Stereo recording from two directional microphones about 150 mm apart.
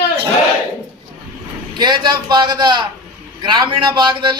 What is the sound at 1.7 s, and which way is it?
A man's voice, 30° right (ahead or behind).